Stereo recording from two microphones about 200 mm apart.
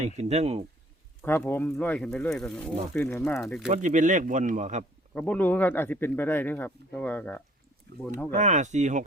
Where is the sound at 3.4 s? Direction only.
Centre (ahead or behind).